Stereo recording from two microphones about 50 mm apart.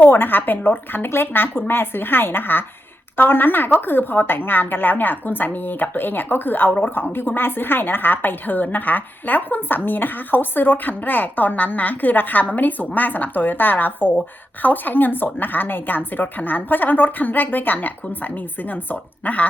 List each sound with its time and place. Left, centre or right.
0.0 s a woman's voice: left